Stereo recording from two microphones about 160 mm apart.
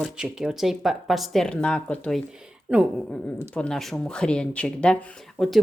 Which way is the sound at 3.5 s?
5° left (ahead or behind).